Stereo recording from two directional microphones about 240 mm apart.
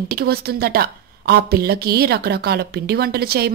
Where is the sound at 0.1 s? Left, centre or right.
Right.